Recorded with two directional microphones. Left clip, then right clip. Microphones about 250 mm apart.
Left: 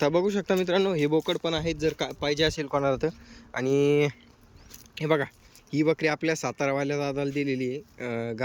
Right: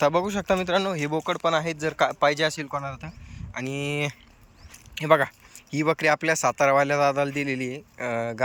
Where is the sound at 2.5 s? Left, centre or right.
Left; by 8.4 s centre.